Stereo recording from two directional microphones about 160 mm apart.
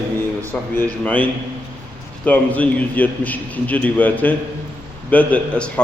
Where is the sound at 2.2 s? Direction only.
10° left (ahead or behind).